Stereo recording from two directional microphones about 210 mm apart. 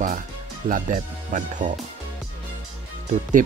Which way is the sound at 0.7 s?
40° right (ahead or behind).